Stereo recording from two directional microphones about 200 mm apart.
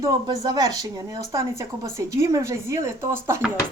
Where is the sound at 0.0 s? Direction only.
15° right (ahead or behind).